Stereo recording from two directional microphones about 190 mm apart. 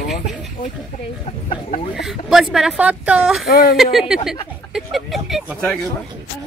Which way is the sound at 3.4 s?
50° left (ahead or behind).